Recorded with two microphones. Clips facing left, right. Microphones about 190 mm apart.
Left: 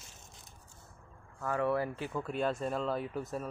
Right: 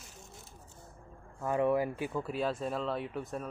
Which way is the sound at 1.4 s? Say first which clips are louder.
Right 3 dB; 20° right (ahead or behind).